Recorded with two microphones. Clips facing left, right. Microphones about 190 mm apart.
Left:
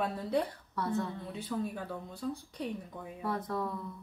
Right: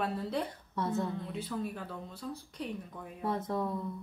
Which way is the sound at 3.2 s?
25° right (ahead or behind).